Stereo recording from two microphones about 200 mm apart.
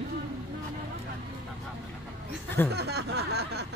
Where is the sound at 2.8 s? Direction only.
55° right (ahead or behind).